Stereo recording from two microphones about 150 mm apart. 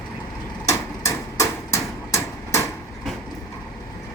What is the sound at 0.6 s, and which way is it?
Hammer, 20° left (ahead or behind).